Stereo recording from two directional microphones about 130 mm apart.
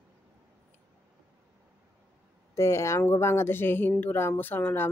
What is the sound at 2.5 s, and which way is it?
Speech, 20° left (ahead or behind).